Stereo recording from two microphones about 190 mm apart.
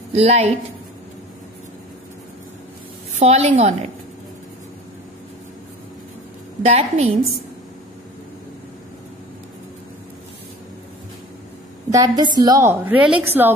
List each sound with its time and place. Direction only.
0.1 s a woman's voice: 35° right (ahead or behind)
3.2 s a woman's voice: 35° right (ahead or behind)
6.6 s a woman's voice: 30° right (ahead or behind)
11.9 s a woman's voice: 20° right (ahead or behind)